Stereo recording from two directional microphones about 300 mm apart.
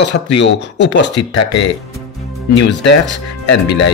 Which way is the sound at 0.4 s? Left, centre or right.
Left.